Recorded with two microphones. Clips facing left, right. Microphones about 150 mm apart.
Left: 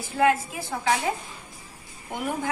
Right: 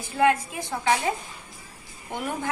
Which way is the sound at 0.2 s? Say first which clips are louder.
Even; centre (ahead or behind).